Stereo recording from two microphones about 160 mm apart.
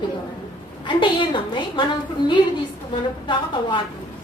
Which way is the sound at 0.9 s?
30° left (ahead or behind).